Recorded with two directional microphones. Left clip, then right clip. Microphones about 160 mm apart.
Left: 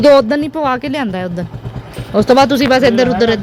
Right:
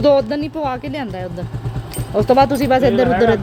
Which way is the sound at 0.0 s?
55° left (ahead or behind).